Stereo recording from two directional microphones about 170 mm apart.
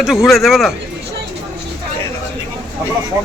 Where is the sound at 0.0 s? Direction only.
Centre (ahead or behind).